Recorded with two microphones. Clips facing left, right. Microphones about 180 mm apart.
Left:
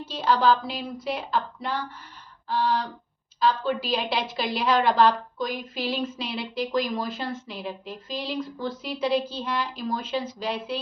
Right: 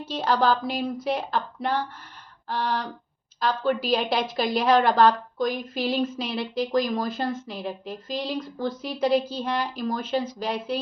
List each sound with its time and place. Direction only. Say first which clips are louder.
0.4 s a woman's voice: even; 45° right (ahead or behind)